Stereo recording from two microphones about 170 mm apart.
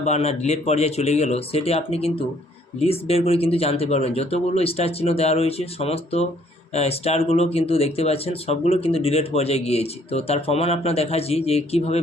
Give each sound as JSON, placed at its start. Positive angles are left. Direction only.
{"t": 0.0, "sound": "speech", "side_deg": 40}